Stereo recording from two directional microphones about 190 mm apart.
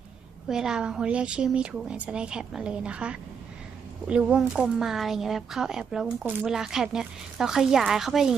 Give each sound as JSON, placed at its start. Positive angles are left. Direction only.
{"t": 0.5, "sound": "speech", "side_deg": -5}